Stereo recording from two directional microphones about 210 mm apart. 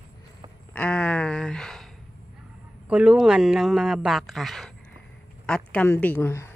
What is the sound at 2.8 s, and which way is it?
A woman's voice, 5° right (ahead or behind).